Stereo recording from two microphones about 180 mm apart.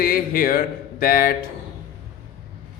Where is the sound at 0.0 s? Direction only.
55° left (ahead or behind).